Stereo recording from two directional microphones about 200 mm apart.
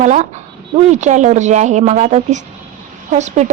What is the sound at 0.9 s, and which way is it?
A woman's voice, 35° right (ahead or behind).